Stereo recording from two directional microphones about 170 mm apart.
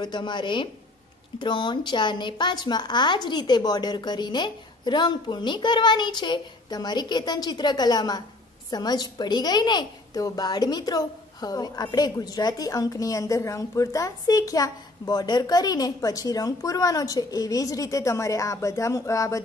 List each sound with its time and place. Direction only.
0.0 s a woman's voice: 25° left (ahead or behind)